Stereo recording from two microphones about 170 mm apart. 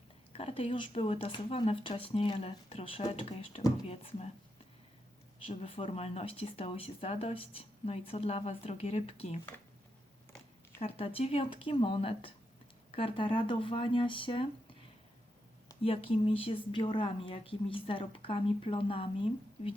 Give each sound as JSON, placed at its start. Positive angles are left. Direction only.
{"t": 0.3, "sound": "speech", "side_deg": 35}
{"t": 5.5, "sound": "speech", "side_deg": 35}
{"t": 10.8, "sound": "speech", "side_deg": 35}
{"t": 15.8, "sound": "speech", "side_deg": 35}